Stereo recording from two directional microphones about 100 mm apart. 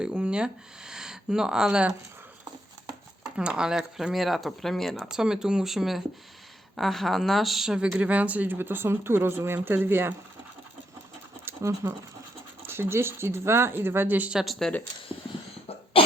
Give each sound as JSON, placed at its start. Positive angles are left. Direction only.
{"t": 0.0, "sound": "speech", "side_deg": -10}
{"t": 3.3, "sound": "speech", "side_deg": -10}
{"t": 11.4, "sound": "speech", "side_deg": -30}
{"t": 14.3, "sound": "speech", "side_deg": 0}
{"t": 15.6, "sound": "cough", "side_deg": 70}